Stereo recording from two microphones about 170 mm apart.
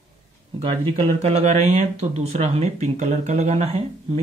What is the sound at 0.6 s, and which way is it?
Speech, 35° right (ahead or behind).